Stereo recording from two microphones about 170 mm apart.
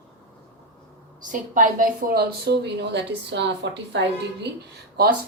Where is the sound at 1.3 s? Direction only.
50° right (ahead or behind); by 4.0 s 90° right.